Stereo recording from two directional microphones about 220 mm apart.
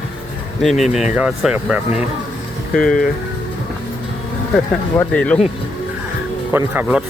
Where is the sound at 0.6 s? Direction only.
Centre (ahead or behind).